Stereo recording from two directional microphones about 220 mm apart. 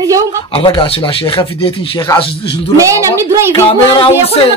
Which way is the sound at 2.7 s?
15° right (ahead or behind).